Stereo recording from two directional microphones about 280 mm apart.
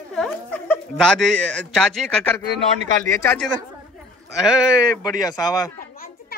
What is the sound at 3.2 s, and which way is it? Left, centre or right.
Speech, centre.